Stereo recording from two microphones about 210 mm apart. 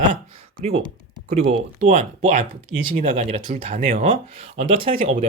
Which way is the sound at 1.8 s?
35° right (ahead or behind).